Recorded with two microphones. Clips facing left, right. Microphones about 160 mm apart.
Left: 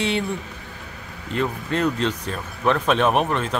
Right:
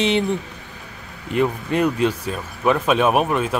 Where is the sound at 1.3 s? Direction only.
15° right (ahead or behind).